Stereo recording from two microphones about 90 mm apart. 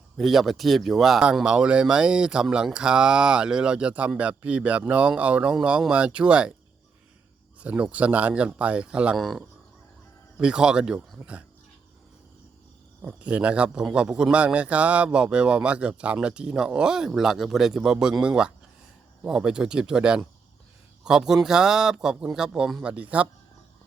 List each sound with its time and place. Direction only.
0.2 s speech: centre (ahead or behind)
7.6 s speech: 15° right (ahead or behind)
9.1 s speech: centre (ahead or behind); by 11.4 s 15° right (ahead or behind)
13.1 s speech: 15° right (ahead or behind)